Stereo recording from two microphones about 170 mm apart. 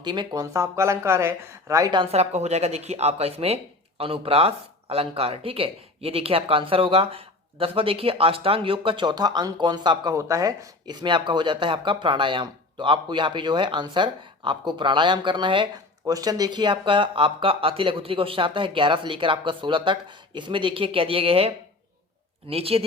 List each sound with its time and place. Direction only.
0.0 s speech: 25° right (ahead or behind)
2.1 s speech: 40° right (ahead or behind)